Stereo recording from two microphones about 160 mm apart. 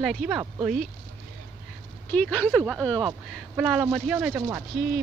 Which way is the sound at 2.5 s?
5° right (ahead or behind).